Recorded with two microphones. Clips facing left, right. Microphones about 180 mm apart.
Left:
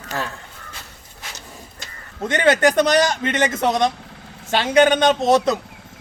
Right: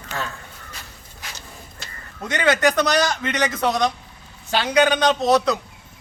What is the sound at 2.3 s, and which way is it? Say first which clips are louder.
A man's voice: left 3 dB; 30° left (ahead or behind).